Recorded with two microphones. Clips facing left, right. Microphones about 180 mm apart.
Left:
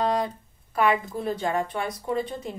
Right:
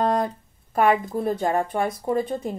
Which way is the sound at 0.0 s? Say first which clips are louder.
Right 3 dB; 50° right (ahead or behind).